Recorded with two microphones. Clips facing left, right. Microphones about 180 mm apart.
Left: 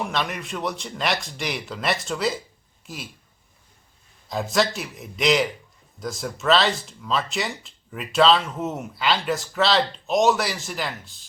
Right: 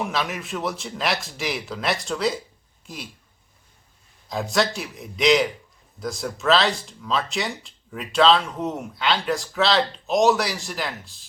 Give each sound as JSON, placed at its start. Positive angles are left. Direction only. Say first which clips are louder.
{"t": 0.0, "sound": "speech", "louder": "even", "side_deg": 0}
{"t": 4.3, "sound": "speech", "louder": "even", "side_deg": 0}